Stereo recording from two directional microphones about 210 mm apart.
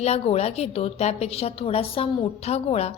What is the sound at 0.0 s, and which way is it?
A woman's voice, 30° left (ahead or behind).